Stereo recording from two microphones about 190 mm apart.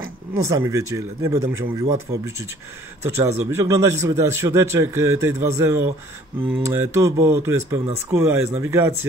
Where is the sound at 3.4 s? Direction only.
15° right (ahead or behind).